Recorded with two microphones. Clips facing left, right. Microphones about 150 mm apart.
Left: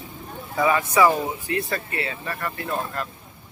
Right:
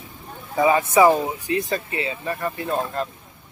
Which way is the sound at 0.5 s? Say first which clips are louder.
Right 3 dB; 25° right (ahead or behind).